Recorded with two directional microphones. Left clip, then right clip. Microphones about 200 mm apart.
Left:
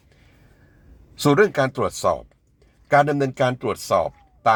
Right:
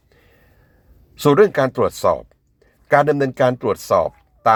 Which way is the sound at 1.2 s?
15° right (ahead or behind).